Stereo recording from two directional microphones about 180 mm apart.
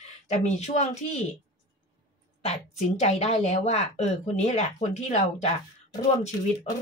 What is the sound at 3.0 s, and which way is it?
Speech, 40° left (ahead or behind).